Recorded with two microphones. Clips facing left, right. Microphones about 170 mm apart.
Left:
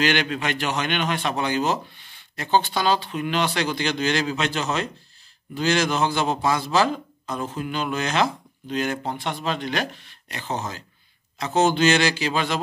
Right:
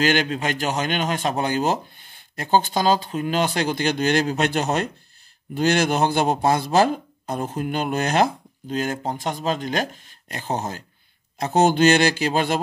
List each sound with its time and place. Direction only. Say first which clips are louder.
0.0 s speech: right 2 dB; 45° right (ahead or behind)